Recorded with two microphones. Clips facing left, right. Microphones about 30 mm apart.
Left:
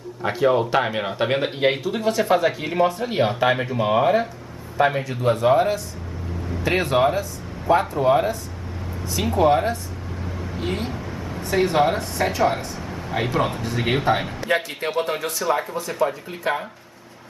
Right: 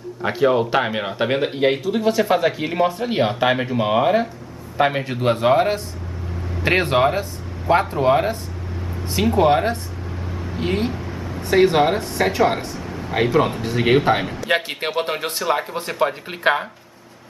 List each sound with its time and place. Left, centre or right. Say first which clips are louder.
0.2 s speech: right 1 dB; centre
4.7 s speech: right 1 dB; right
7.2 s a sound: right 1 dB; right
7.9 s speech: right 1 dB; right
9.4 s speech: even; right
10.9 s vehicle: right 2 dB; centre
11.4 s speech: right 4 dB; right
12.7 s a sound: right 2 dB; centre
13.1 s speech: right 5 dB; centre
14.5 s speech: right 1 dB; right